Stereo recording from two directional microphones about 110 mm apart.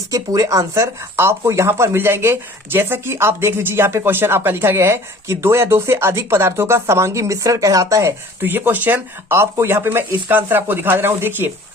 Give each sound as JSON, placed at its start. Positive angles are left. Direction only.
{"t": 0.1, "sound": "speech", "side_deg": -30}